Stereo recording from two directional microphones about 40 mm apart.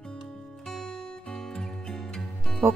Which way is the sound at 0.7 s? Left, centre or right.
Centre.